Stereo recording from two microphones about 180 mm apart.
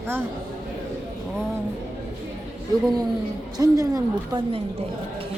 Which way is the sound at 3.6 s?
20° right (ahead or behind).